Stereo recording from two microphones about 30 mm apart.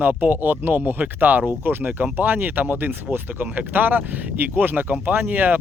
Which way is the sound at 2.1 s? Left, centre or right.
Right.